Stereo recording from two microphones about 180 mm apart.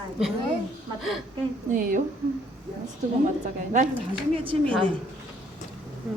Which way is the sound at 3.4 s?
45° right (ahead or behind).